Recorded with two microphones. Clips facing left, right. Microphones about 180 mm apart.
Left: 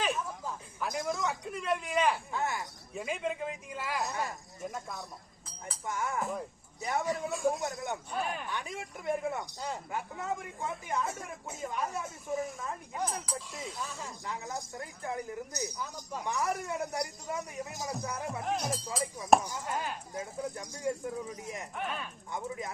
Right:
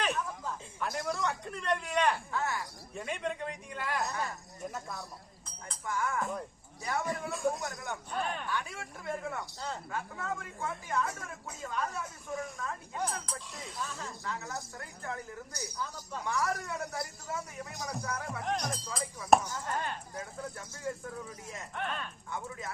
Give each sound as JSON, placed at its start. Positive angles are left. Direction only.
{"t": 0.0, "sound": "a man's voice", "side_deg": 0}
{"t": 2.3, "sound": "speech", "side_deg": 20}
{"t": 2.9, "sound": "a man's voice", "side_deg": 5}
{"t": 4.1, "sound": "speech", "side_deg": 20}
{"t": 4.6, "sound": "a man's voice", "side_deg": 0}
{"t": 5.8, "sound": "speech", "side_deg": 20}
{"t": 7.3, "sound": "a man's voice", "side_deg": 0}
{"t": 7.6, "sound": "speech", "side_deg": 20}
{"t": 8.1, "sound": "a man's voice", "side_deg": 5}
{"t": 8.4, "sound": "speech", "side_deg": 20}
{"t": 13.0, "sound": "a man's voice", "side_deg": 10}
{"t": 14.0, "sound": "speech", "side_deg": 15}
{"t": 21.8, "sound": "a man's voice", "side_deg": 5}
{"t": 22.3, "sound": "speech", "side_deg": 15}